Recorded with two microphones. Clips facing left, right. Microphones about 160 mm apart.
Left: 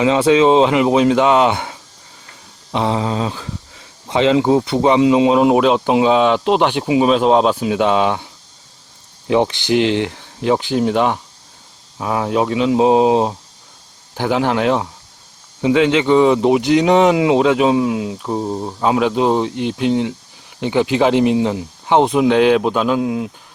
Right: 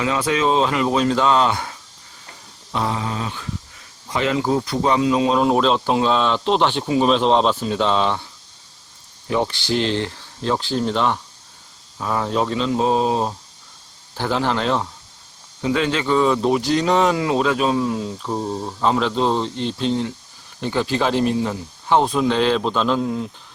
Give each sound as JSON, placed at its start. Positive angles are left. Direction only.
{"t": 0.0, "sound": "speech", "side_deg": 25}
{"t": 2.7, "sound": "speech", "side_deg": 25}